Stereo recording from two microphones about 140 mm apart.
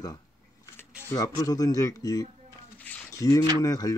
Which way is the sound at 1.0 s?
25° left (ahead or behind).